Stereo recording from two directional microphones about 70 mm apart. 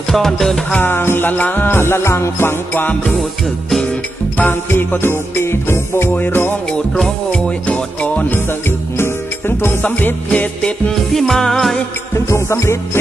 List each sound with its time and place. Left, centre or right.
0.1 s music: centre
0.7 s music: left
4.4 s music: left
7.0 s music: centre
8.6 s music: left
9.8 s music: left
11.1 s music: centre
12.3 s music: left